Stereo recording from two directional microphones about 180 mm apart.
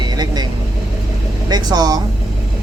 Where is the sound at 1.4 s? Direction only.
20° right (ahead or behind).